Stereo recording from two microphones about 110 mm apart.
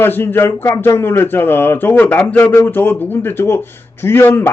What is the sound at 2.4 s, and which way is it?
A man's voice, 25° left (ahead or behind).